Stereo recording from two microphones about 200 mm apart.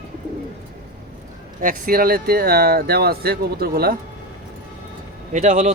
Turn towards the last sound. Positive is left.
turn(degrees=-35)  # may be behind; listen again after turning